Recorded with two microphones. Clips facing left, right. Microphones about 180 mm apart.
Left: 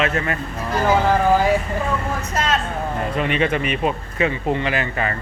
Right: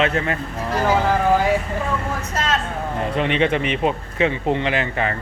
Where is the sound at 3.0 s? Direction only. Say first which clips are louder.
Right 2 dB; 25° right (ahead or behind).